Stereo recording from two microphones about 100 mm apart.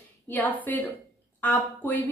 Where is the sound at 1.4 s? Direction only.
15° left (ahead or behind).